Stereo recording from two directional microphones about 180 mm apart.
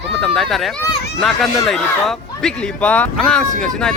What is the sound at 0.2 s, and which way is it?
Speech, centre (ahead or behind).